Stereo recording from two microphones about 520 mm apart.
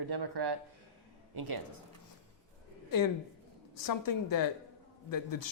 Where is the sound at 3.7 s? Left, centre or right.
Left.